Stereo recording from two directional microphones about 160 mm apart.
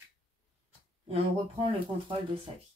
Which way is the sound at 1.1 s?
35° right (ahead or behind).